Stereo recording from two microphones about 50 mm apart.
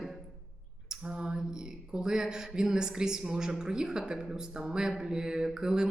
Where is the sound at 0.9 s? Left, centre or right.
Centre.